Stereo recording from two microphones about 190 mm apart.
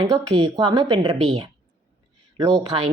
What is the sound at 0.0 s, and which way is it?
Speech, 25° right (ahead or behind).